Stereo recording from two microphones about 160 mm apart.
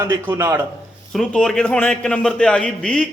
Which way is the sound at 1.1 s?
5° left (ahead or behind).